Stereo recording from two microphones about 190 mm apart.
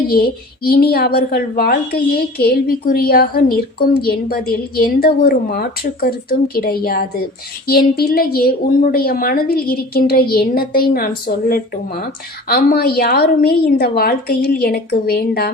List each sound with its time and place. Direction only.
0.1 s a woman's voice: 50° left (ahead or behind)